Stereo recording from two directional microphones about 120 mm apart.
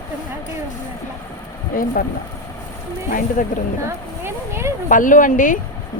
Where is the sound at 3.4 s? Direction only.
90° left.